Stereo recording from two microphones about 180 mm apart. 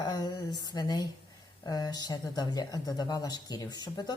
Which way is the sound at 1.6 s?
20° left (ahead or behind).